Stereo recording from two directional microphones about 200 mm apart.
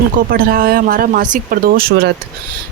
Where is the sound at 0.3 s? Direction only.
45° right (ahead or behind).